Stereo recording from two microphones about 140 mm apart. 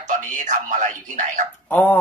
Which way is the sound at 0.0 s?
60° right (ahead or behind).